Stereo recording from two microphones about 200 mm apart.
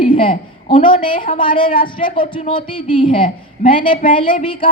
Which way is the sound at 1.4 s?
25° left (ahead or behind).